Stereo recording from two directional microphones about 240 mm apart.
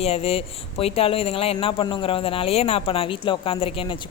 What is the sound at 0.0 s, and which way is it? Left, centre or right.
Speech, left.